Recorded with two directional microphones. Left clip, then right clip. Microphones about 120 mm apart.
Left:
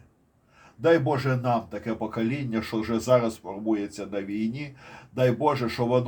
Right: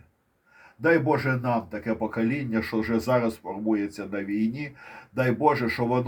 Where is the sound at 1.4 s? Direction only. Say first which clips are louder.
Even; 25° right (ahead or behind).